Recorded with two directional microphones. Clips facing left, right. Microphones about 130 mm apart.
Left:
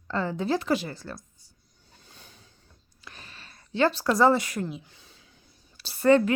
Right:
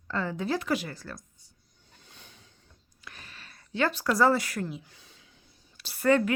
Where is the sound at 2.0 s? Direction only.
35° left (ahead or behind).